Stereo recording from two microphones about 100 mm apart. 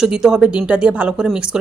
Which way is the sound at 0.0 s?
5° right (ahead or behind).